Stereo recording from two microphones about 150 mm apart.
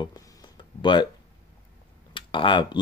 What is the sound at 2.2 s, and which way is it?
Speech, 35° left (ahead or behind).